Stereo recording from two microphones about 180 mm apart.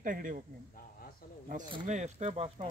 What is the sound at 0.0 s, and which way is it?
Speech, 50° right (ahead or behind).